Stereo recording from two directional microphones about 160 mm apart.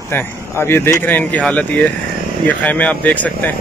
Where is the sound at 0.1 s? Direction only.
15° left (ahead or behind).